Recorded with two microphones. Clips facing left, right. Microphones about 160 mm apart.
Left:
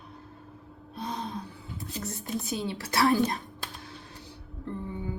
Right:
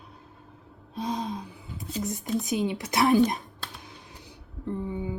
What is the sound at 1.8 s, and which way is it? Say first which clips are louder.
Speech: right 5 dB; 15° right (ahead or behind).